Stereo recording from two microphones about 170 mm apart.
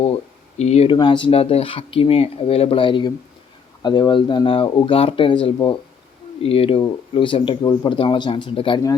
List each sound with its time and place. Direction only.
0.6 s speech: 40° left (ahead or behind)
0.9 s speech: 25° left (ahead or behind)